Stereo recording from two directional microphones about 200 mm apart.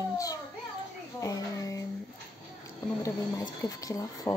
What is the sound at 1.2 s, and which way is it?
Child singing, 15° left (ahead or behind).